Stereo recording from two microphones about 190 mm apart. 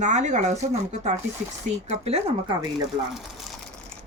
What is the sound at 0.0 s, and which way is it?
Speech, 40° right (ahead or behind).